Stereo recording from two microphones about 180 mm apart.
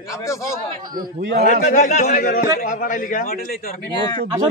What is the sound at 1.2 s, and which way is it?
Speech, 70° right (ahead or behind).